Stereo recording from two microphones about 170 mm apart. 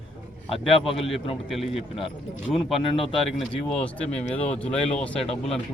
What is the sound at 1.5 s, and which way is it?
Speech, centre (ahead or behind).